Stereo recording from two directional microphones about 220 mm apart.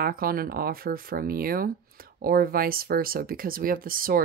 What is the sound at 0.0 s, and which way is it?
Speech, 40° right (ahead or behind).